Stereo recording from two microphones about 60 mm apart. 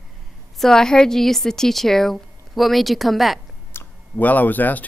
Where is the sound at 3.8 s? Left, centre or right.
Left.